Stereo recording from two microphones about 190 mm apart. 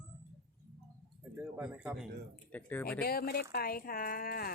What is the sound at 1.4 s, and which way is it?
Speech, 10° right (ahead or behind).